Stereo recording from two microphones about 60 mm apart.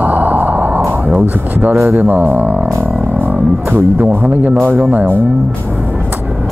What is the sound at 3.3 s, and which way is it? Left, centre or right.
Speech, right.